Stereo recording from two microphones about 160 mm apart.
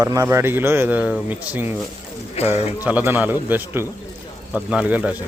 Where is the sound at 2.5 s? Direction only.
40° left (ahead or behind).